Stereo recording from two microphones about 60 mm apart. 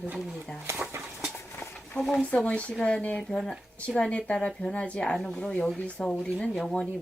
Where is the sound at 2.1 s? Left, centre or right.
Left.